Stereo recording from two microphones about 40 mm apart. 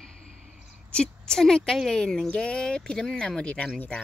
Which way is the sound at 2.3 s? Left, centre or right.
Left.